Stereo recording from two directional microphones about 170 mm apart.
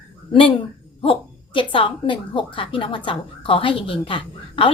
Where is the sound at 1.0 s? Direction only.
30° left (ahead or behind).